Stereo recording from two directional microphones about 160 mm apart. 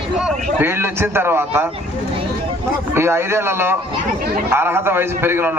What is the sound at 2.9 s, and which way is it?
A man's voice, 15° right (ahead or behind).